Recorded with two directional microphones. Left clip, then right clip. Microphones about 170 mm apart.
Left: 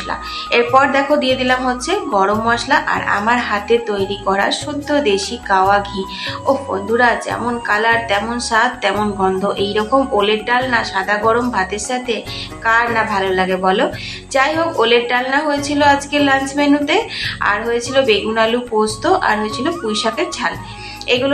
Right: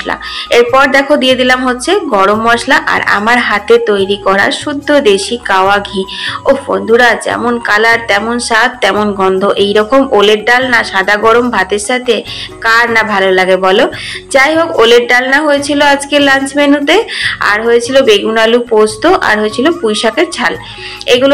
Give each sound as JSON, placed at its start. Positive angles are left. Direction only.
{"t": 0.1, "sound": "a woman's voice", "side_deg": -30}